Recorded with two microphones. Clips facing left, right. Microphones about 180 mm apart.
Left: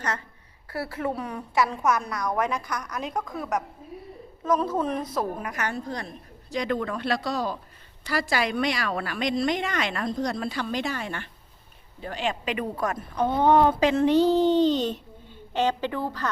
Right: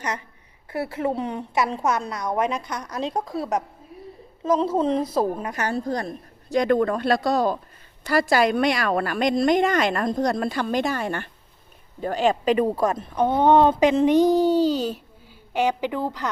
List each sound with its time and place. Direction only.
0.7 s a woman's voice: 20° right (ahead or behind)